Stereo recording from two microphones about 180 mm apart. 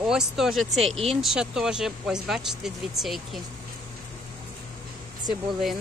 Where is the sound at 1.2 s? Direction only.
5° right (ahead or behind).